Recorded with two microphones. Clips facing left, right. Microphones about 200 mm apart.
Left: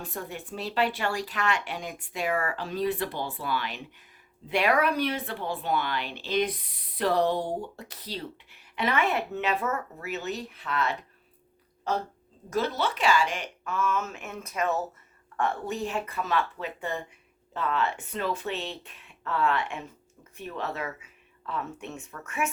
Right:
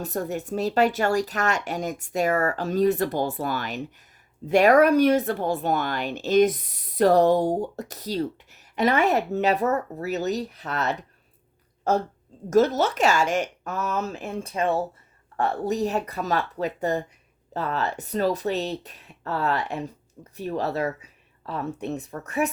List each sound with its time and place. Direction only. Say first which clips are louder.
0.0 s speech: right 9 dB; 45° right (ahead or behind)